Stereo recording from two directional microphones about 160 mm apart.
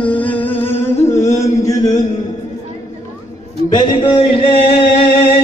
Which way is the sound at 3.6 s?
25° left (ahead or behind).